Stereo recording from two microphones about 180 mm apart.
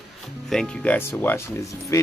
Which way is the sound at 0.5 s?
5° left (ahead or behind).